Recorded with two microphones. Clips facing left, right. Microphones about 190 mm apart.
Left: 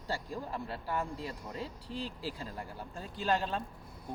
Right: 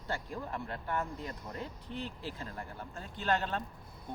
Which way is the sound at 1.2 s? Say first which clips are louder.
Left 1 dB; 30° left (ahead or behind).